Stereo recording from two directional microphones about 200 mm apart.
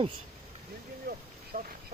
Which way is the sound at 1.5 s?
50° right (ahead or behind).